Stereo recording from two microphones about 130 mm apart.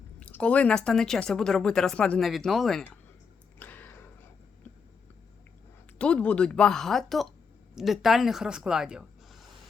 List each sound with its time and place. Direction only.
0.2 s speech: 10° left (ahead or behind)
3.6 s a sound: 15° left (ahead or behind)
6.0 s a woman's voice: 10° left (ahead or behind)